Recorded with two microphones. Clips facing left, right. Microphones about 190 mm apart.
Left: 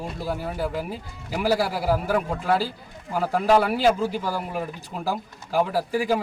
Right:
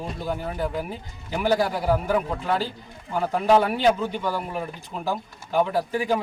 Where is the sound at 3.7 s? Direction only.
5° left (ahead or behind).